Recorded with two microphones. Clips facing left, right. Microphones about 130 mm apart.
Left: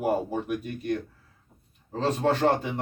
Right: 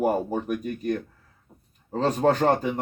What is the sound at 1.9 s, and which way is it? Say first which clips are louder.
Speech: right 3 dB; 40° right (ahead or behind).